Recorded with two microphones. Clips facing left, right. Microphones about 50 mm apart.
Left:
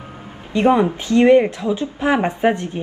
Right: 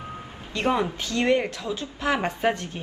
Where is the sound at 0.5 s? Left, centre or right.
Left.